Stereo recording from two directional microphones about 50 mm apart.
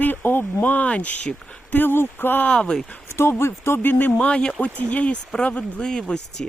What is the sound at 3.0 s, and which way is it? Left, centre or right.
Speech, left.